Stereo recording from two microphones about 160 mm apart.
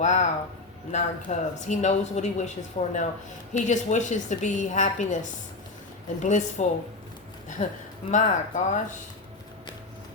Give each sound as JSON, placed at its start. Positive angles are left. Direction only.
{"t": 0.0, "sound": "speech", "side_deg": 50}